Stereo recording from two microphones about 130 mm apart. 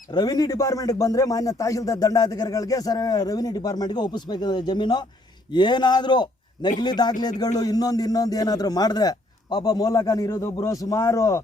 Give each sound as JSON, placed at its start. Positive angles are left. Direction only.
{"t": 0.1, "sound": "a man's voice", "side_deg": 30}